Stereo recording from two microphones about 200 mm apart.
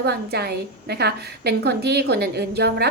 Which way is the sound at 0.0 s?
55° right (ahead or behind).